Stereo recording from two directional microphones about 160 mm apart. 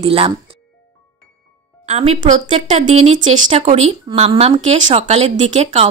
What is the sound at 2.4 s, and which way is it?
A woman's voice, 30° right (ahead or behind).